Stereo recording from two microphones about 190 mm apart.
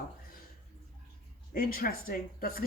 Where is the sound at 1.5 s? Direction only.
50° left (ahead or behind).